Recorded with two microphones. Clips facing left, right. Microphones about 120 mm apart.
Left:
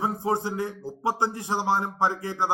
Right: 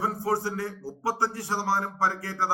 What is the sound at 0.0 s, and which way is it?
A man's voice, 20° left (ahead or behind).